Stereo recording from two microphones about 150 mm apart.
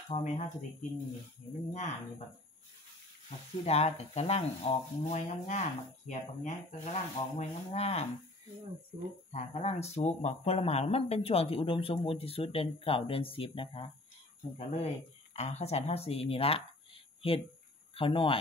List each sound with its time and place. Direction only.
0.1 s speech: 50° left (ahead or behind)
1.7 s speech: 50° left (ahead or behind)
3.6 s speech: 45° left (ahead or behind)
9.3 s speech: 45° left (ahead or behind)